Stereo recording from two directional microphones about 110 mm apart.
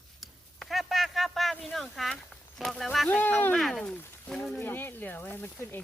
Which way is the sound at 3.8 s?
5° left (ahead or behind).